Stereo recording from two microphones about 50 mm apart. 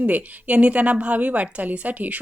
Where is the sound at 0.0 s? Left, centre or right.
Right.